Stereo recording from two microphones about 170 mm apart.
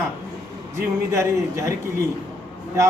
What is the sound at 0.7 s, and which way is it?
Speech, 15° right (ahead or behind).